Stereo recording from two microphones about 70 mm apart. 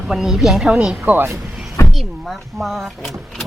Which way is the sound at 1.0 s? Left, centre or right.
Right.